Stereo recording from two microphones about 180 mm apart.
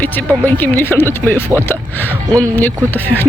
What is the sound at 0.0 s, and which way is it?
Speech, 10° left (ahead or behind).